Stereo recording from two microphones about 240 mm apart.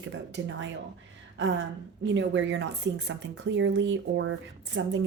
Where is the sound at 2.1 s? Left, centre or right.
Right.